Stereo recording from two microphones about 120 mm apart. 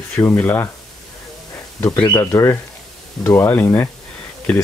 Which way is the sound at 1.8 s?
25° left (ahead or behind).